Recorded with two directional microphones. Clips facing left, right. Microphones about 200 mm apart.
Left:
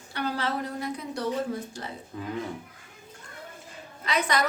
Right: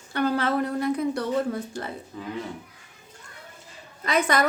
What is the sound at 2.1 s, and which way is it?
Speech, centre (ahead or behind).